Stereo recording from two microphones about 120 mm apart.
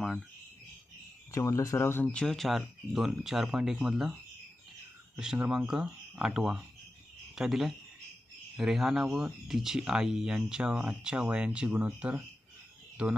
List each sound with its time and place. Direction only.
1.3 s speech: 25° left (ahead or behind); by 13.1 s 10° right (ahead or behind)